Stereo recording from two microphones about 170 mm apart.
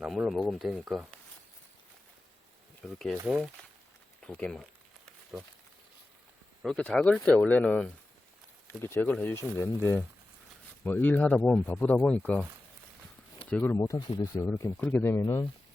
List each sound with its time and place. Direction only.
0.0 s speech: centre (ahead or behind)
2.8 s speech: centre (ahead or behind)
4.2 s a sound: 5° left (ahead or behind)
6.6 s speech: 5° left (ahead or behind)
13.5 s speech: 10° left (ahead or behind)